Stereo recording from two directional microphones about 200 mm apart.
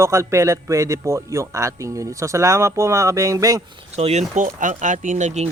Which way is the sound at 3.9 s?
35° right (ahead or behind).